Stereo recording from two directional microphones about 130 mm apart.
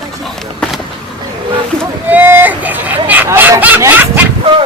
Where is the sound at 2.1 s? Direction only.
15° right (ahead or behind).